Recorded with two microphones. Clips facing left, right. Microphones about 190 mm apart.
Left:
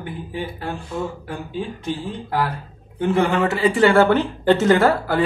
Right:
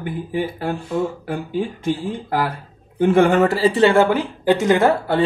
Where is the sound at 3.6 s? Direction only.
25° right (ahead or behind).